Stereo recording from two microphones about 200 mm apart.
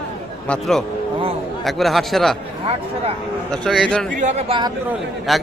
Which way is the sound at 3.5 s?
5° left (ahead or behind).